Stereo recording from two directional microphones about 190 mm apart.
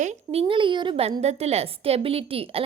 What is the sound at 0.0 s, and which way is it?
Speech, 35° right (ahead or behind).